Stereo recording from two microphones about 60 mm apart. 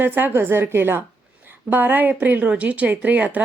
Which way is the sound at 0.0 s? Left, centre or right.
Right.